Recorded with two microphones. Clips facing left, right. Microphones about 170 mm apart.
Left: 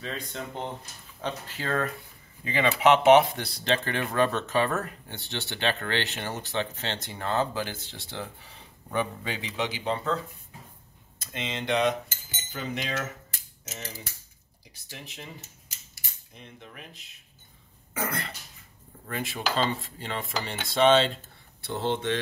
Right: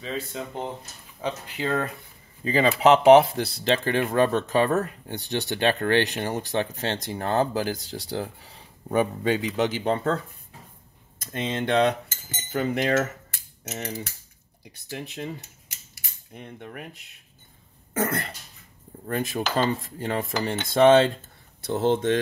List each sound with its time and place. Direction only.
0.0 s speech: 5° right (ahead or behind)
1.2 s speech: 15° right (ahead or behind)
2.4 s speech: 35° right (ahead or behind)
5.4 s speech: 40° right (ahead or behind)
11.1 s cutlery: 50° right (ahead or behind)
14.6 s speech: 60° right (ahead or behind)
16.3 s cutlery: 55° right (ahead or behind)
17.9 s cutlery: 50° right (ahead or behind)
21.5 s speech: 40° right (ahead or behind)